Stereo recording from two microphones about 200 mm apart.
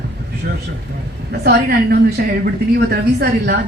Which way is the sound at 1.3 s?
55° right (ahead or behind).